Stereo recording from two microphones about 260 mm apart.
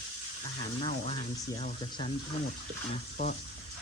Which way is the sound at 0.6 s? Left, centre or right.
Left.